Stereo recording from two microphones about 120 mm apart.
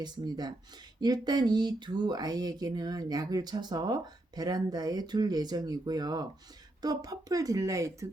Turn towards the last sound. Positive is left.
turn(degrees=-25)  # may be behind; listen again after turning